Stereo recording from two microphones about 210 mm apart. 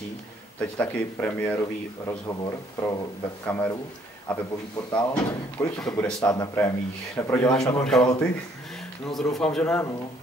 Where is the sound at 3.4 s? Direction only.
5° left (ahead or behind).